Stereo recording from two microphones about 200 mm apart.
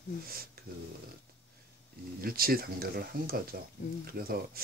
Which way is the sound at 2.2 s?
50° right (ahead or behind).